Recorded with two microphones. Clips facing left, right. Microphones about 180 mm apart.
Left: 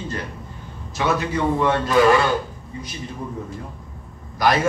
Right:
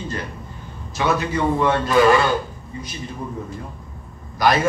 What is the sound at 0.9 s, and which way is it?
A man's voice, centre (ahead or behind).